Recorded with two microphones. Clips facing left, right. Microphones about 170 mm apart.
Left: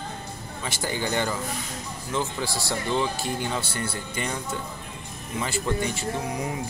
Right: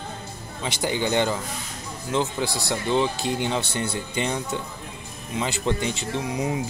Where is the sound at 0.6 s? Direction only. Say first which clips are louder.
Right 4 dB; 20° right (ahead or behind).